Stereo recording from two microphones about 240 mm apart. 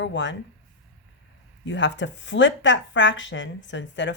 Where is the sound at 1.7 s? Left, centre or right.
Left.